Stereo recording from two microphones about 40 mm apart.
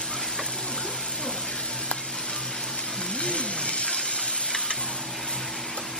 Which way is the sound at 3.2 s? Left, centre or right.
Left.